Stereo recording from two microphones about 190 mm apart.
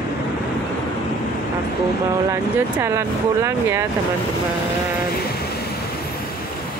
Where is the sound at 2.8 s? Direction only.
15° right (ahead or behind).